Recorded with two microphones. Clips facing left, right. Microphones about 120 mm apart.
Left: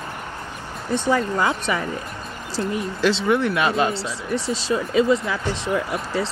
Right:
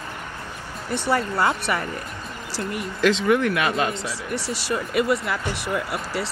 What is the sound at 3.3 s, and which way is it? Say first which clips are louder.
Speech: left 1 dB; 25° left (ahead or behind).